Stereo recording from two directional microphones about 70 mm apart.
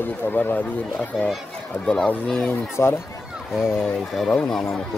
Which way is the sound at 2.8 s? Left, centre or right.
Left.